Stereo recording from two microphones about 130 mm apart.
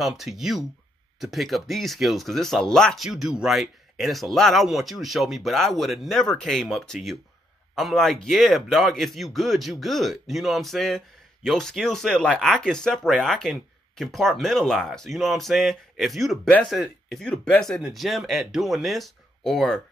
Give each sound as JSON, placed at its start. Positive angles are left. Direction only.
{"t": 0.0, "sound": "speech", "side_deg": 0}